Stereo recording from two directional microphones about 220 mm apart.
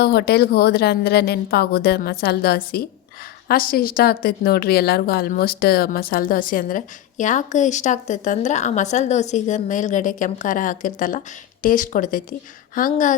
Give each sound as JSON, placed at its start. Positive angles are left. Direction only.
{"t": 0.0, "sound": "a woman's voice", "side_deg": 45}